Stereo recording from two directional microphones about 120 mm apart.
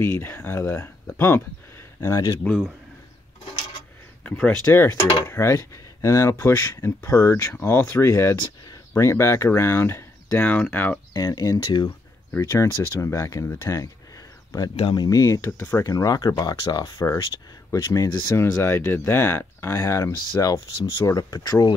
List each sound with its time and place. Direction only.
0.0 s speech: 20° left (ahead or behind)
4.2 s speech: 15° left (ahead or behind)
4.8 s speech: 35° left (ahead or behind)
5.3 s speech: 25° left (ahead or behind)
11.1 s speech: 30° left (ahead or behind)
15.0 s speech: 30° left (ahead or behind)